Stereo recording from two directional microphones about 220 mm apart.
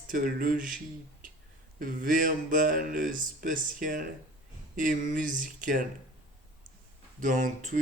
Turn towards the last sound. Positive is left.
turn(degrees=-35)  # may be behind; listen again after turning